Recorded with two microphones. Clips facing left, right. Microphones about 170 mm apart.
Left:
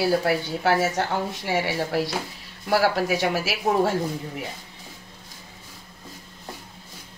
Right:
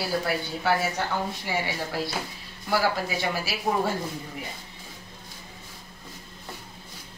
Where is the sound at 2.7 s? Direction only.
75° left (ahead or behind).